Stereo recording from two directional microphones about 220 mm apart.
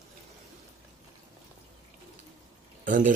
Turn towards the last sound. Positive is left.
turn(degrees=-35)  # may be behind; listen again after turning